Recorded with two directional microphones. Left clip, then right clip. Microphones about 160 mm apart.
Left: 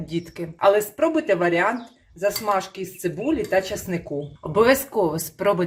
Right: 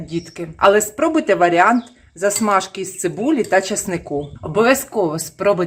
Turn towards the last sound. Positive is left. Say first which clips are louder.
# right 4 dB
turn(degrees=-15)  # may be behind; listen again after turning